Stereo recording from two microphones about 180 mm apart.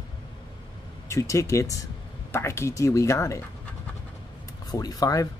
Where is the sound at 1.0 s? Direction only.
15° left (ahead or behind).